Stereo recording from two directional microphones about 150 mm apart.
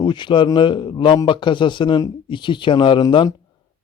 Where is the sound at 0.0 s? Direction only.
30° left (ahead or behind).